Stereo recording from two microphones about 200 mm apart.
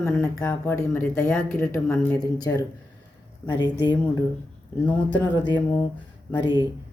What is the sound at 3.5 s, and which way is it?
Speech, 20° left (ahead or behind).